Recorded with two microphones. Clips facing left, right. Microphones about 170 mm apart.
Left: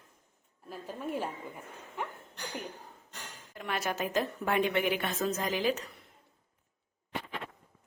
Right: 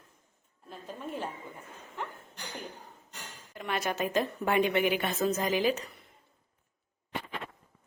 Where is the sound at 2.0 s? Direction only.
10° left (ahead or behind).